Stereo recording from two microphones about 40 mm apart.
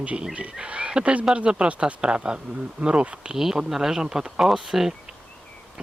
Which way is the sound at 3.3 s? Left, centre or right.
Centre.